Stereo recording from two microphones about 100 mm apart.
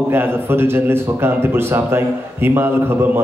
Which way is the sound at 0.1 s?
20° right (ahead or behind).